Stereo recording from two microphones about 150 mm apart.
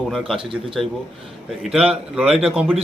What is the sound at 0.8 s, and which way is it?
A man's voice, centre (ahead or behind).